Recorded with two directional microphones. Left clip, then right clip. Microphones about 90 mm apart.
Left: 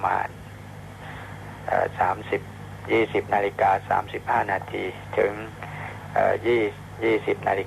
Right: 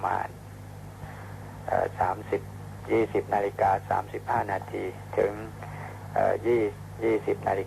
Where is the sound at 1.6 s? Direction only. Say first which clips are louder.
Left 4 dB; 30° left (ahead or behind).